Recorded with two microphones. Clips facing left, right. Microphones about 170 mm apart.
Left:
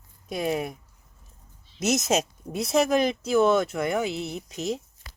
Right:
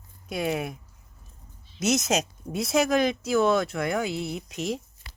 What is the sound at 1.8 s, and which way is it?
Speech, centre (ahead or behind).